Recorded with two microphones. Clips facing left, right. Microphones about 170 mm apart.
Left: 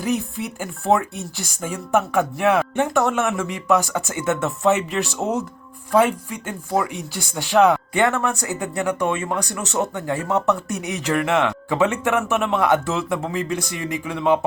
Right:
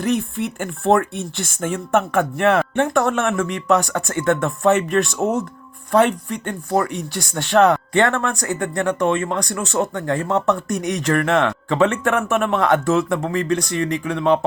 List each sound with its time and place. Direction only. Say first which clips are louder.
0.0 s speech: right 3 dB; centre (ahead or behind)
3.0 s speech: right 1 dB; 15° left (ahead or behind)
7.9 s speech: right 2 dB; 10° left (ahead or behind)